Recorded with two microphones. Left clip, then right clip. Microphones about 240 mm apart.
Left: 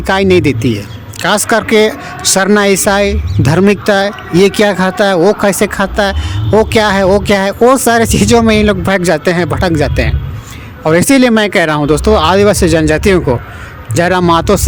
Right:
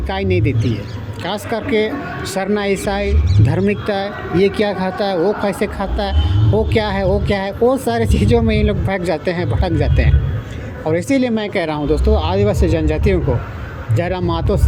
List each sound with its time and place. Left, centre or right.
0.1 s speech: left